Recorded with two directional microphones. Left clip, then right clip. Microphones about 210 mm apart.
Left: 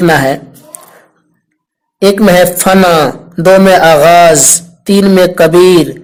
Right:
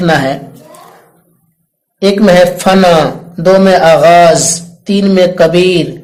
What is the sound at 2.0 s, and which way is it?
A man's voice, 35° left (ahead or behind).